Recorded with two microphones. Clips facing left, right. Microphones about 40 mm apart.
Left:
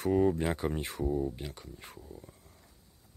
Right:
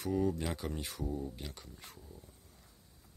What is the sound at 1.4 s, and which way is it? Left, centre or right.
Speech, centre.